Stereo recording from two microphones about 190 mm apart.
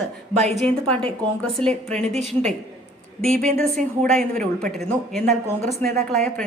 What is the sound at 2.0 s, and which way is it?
Speech, 35° right (ahead or behind).